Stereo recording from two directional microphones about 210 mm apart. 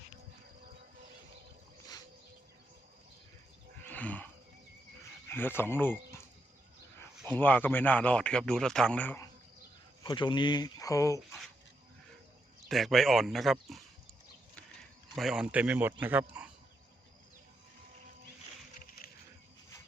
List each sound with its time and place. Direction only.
3.8 s a sound: 5° left (ahead or behind)
5.3 s a man's voice: 10° left (ahead or behind)
7.3 s a man's voice: 10° left (ahead or behind)
10.0 s speech: 20° left (ahead or behind)
12.6 s speech: centre (ahead or behind)
15.1 s speech: centre (ahead or behind)